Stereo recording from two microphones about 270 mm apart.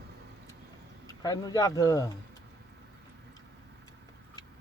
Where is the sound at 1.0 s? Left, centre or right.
Centre.